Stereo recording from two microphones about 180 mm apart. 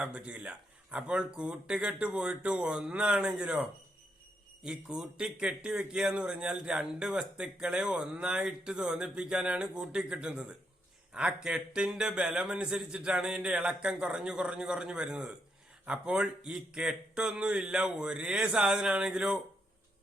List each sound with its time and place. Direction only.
0.0 s speech: 5° right (ahead or behind)